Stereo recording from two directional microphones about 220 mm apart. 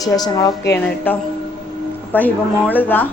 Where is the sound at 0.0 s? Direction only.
15° left (ahead or behind).